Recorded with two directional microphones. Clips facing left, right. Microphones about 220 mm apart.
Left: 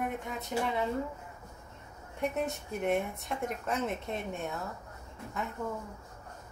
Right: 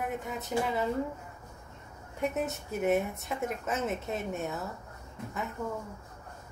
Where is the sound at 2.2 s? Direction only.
Centre (ahead or behind).